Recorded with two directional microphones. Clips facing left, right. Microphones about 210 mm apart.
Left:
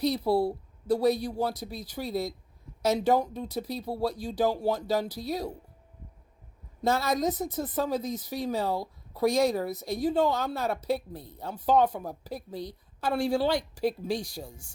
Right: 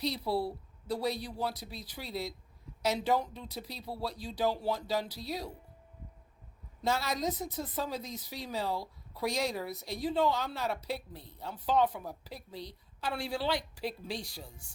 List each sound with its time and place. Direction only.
0.0 s a woman's voice: 50° left (ahead or behind)
6.8 s a woman's voice: 50° left (ahead or behind)